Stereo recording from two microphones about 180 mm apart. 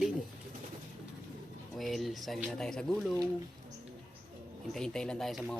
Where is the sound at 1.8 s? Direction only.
Centre (ahead or behind).